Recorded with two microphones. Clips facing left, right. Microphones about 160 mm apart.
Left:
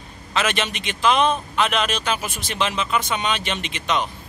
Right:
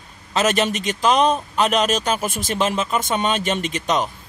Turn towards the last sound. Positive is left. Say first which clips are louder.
# right 3 dB
turn(degrees=-40)  # may be behind; listen again after turning